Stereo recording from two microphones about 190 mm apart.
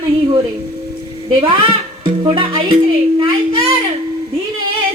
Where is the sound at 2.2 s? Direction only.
25° right (ahead or behind).